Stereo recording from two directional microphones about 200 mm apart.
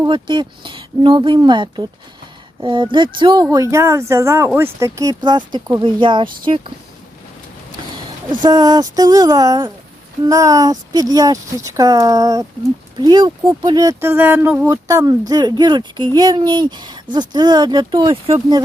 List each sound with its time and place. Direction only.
0.0 s speech: 25° right (ahead or behind)
8.3 s speech: 20° right (ahead or behind)